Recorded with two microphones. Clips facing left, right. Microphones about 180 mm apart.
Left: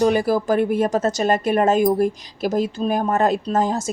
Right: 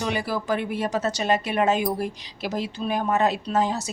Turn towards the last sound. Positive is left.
turn(degrees=50)  # may be behind; listen again after turning